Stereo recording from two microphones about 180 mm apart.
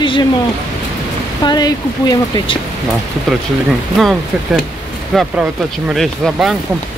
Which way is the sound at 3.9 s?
Centre (ahead or behind).